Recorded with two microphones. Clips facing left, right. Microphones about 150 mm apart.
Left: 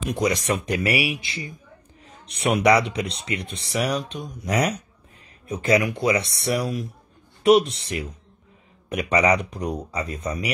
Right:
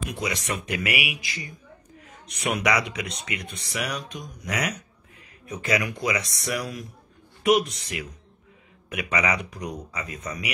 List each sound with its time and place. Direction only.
0.0 s speech: 40° left (ahead or behind)